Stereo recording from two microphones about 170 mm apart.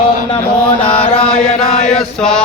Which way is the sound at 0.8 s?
10° left (ahead or behind).